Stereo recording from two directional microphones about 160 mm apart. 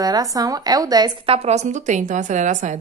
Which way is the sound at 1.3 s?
40° right (ahead or behind).